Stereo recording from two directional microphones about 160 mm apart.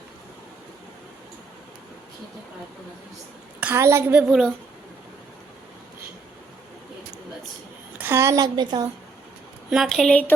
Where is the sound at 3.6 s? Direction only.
15° right (ahead or behind).